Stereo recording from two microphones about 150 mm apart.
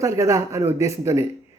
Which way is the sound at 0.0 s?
20° right (ahead or behind).